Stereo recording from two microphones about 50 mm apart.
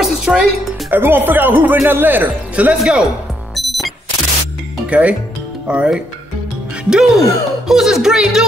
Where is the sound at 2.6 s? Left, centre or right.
Right.